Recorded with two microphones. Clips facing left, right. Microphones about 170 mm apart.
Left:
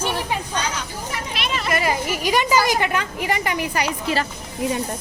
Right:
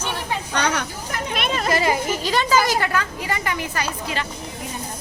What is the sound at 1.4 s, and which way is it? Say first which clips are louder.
Children playing: right 3 dB; 50° right (ahead or behind).